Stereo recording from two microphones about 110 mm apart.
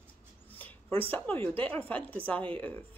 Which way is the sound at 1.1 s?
15° left (ahead or behind).